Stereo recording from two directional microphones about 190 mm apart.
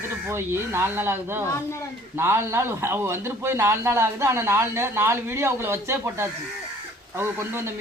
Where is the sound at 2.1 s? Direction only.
10° right (ahead or behind).